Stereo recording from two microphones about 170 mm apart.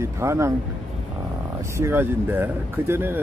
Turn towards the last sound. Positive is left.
turn(degrees=-15)  # may be behind; listen again after turning